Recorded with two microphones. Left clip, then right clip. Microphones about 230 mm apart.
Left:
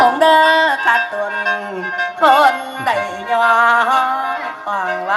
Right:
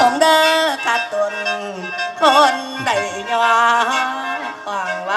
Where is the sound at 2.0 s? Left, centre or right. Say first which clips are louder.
Left 1 dB; centre.